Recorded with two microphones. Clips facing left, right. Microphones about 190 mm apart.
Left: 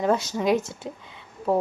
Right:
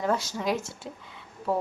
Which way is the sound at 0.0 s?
20° left (ahead or behind).